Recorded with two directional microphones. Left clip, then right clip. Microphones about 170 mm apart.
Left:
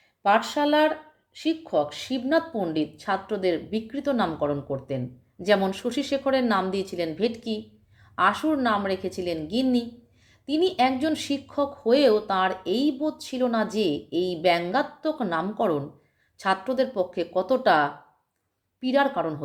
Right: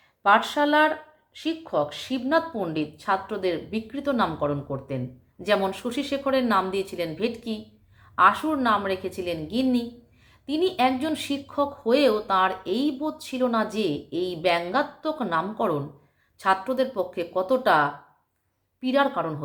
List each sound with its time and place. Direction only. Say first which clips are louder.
0.2 s speech: right 2 dB; 30° left (ahead or behind)